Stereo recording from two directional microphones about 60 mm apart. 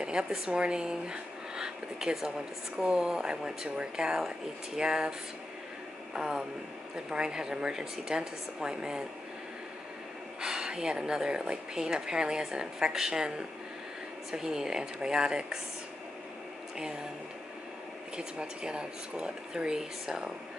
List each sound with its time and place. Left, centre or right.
0.0 s a sound: centre
0.5 s a woman's voice: centre
6.1 s a woman's voice: centre
10.4 s a woman's voice: centre
18.1 s a woman's voice: centre